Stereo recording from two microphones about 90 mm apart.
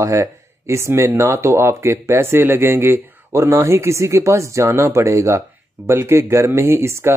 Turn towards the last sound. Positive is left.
turn(degrees=-30)  # may be behind; listen again after turning